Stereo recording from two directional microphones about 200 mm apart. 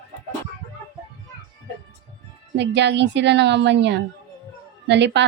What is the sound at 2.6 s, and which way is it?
Speech, 60° right (ahead or behind).